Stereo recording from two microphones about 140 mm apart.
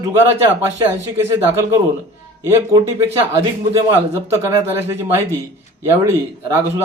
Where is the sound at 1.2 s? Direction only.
20° right (ahead or behind).